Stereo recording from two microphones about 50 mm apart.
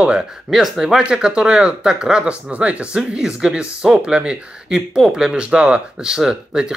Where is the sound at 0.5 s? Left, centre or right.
Centre.